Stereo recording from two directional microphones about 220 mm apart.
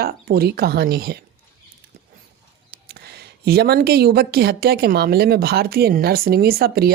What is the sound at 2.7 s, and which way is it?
Speech, 45° right (ahead or behind).